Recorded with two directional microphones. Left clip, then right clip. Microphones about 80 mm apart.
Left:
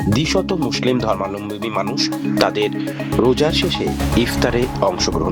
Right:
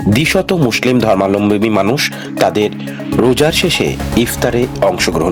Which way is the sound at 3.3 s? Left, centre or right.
Right.